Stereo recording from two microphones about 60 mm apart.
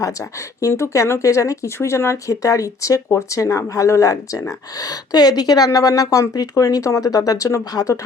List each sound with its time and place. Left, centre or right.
0.0 s speech: left
0.7 s speech: left
1.2 s speech: left